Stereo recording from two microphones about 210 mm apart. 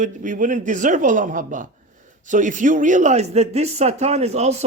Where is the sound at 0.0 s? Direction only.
40° right (ahead or behind).